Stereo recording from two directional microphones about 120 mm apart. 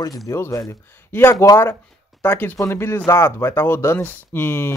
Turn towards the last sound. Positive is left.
turn(degrees=20)  # may be behind; listen again after turning